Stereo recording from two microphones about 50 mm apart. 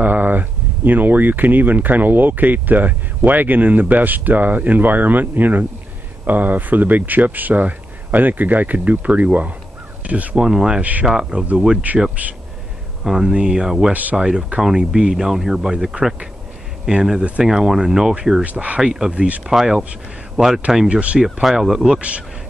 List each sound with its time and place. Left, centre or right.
0.0 s speech: right
10.4 s speech: centre
10.8 s speech: right
11.1 s speech: centre
12.2 s speech: right
13.0 s speech: centre
17.5 s speech: centre
18.4 s speech: right
18.8 s speech: centre
19.2 s speech: right
19.5 s speech: centre
20.9 s speech: right
21.2 s speech: centre